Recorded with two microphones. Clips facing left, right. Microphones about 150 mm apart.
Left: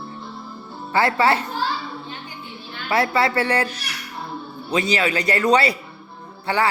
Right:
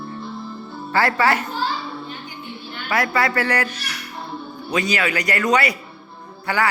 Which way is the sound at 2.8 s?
25° left (ahead or behind).